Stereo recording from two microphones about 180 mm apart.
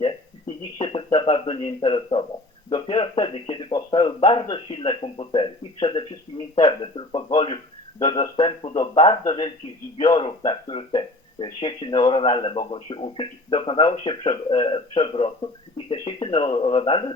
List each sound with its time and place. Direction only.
0.8 s speech: 30° left (ahead or behind)